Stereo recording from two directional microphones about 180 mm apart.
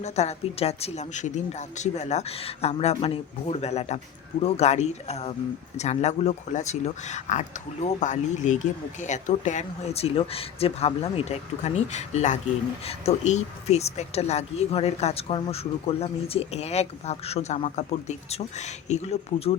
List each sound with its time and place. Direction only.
0.0 s speech: 35° left (ahead or behind)